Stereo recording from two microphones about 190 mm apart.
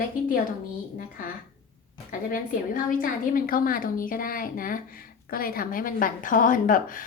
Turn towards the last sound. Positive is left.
turn(degrees=45)  # may be behind; listen again after turning